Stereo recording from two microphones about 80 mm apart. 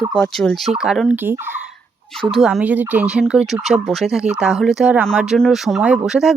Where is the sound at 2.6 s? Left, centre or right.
Centre.